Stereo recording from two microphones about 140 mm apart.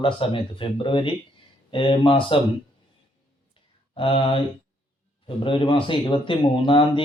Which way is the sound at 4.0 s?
40° left (ahead or behind).